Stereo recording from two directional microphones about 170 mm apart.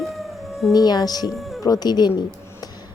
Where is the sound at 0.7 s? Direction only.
25° left (ahead or behind).